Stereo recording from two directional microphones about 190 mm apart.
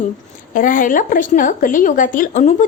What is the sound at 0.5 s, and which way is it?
A woman's voice, 45° left (ahead or behind).